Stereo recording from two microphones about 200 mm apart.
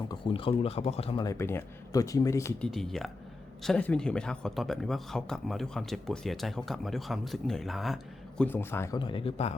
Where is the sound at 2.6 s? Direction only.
Centre (ahead or behind).